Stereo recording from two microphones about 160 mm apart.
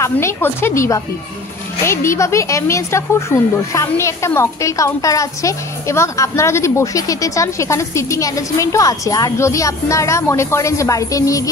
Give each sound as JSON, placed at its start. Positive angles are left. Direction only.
{"t": 0.0, "sound": "a woman's voice", "side_deg": 15}